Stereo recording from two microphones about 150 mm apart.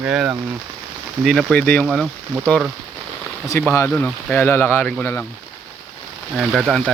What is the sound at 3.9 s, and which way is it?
Speech, 5° left (ahead or behind).